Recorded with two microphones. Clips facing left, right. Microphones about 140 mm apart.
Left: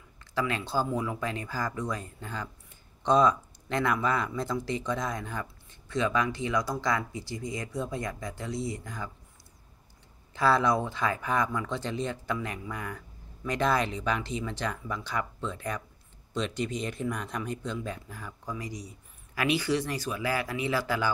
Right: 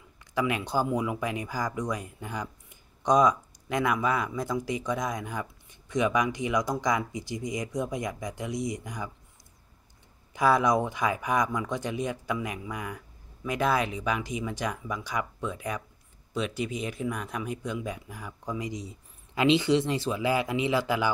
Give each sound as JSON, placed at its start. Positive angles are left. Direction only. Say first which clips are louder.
{"t": 0.3, "sound": "speech", "louder": "right 2 dB", "side_deg": -15}
{"t": 10.3, "sound": "speech", "louder": "right 2 dB", "side_deg": -15}